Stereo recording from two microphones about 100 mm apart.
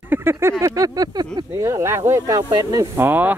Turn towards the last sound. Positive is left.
turn(degrees=-20)  # may be behind; listen again after turning